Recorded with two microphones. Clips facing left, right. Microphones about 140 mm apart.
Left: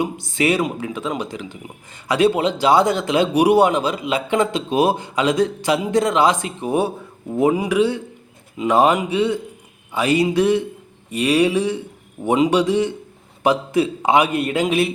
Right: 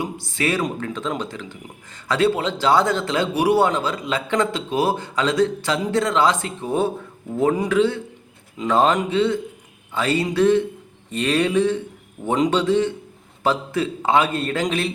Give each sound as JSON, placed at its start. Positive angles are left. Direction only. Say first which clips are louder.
{"t": 0.0, "sound": "speech", "louder": "left 4 dB", "side_deg": 20}